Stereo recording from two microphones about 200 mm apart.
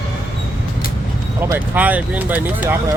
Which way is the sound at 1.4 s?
10° right (ahead or behind).